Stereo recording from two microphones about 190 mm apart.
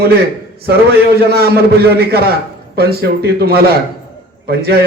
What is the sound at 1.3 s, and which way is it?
A man's voice, 55° right (ahead or behind).